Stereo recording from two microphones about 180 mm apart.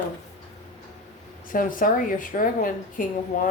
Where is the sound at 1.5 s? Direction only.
50° left (ahead or behind).